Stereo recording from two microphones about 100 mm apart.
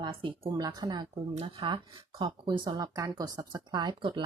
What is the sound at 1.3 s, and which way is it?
Speech, 65° right (ahead or behind).